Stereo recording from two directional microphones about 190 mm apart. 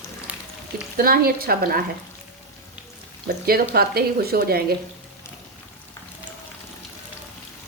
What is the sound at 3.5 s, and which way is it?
Speech, 55° right (ahead or behind).